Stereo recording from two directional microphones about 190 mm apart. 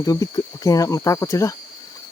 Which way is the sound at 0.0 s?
20° left (ahead or behind).